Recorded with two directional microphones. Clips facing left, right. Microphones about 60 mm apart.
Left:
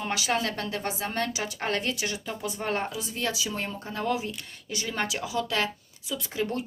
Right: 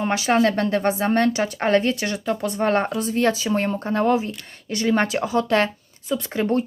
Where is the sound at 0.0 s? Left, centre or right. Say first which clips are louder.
Right 9 dB; right.